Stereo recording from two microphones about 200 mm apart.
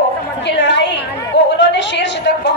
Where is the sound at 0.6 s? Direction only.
60° left (ahead or behind).